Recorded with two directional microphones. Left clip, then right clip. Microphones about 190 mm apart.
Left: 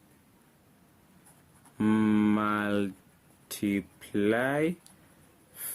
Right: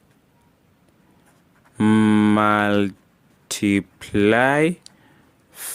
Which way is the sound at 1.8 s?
45° right (ahead or behind).